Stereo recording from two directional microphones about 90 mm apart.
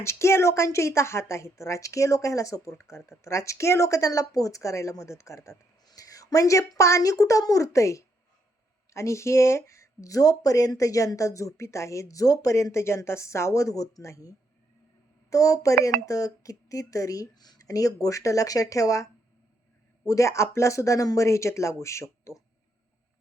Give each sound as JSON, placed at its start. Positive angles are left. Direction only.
{"t": 0.0, "sound": "a woman's voice", "side_deg": 30}
{"t": 5.8, "sound": "a woman's voice", "side_deg": 45}
{"t": 20.1, "sound": "a woman's voice", "side_deg": 35}